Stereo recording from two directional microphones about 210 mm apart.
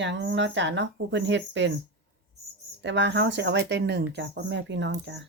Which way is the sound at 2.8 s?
55° right (ahead or behind).